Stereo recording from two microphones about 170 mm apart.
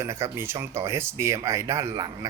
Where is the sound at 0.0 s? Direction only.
15° right (ahead or behind).